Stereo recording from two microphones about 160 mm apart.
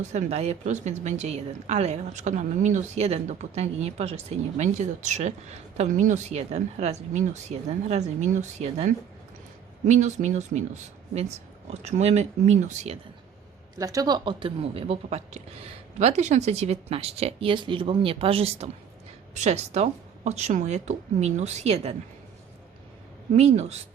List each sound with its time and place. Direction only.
0.0 s speech: 45° right (ahead or behind)
13.7 s speech: 20° right (ahead or behind); by 21.9 s 45° right (ahead or behind)
23.3 s speech: 45° right (ahead or behind)